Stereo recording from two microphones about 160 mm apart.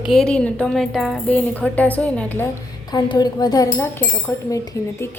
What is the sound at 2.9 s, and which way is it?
A woman's voice, 25° left (ahead or behind).